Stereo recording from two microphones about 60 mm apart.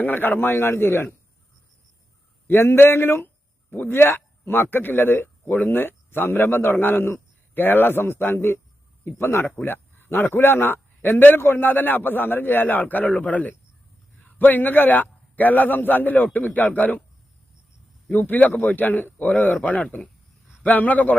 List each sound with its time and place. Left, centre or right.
0.0 s a man's voice: left
2.5 s a man's voice: left
18.1 s a man's voice: left